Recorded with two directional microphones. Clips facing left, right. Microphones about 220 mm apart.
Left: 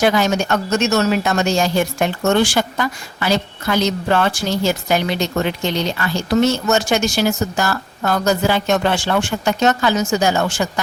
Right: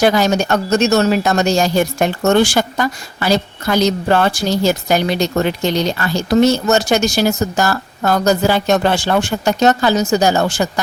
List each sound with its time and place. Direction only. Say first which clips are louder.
0.0 s speech: right 3 dB; 35° right (ahead or behind)